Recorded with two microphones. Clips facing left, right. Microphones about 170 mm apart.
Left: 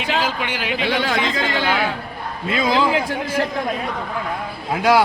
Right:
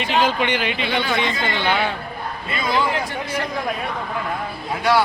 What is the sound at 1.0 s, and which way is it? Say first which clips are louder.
Speech: left 1 dB; 90° left.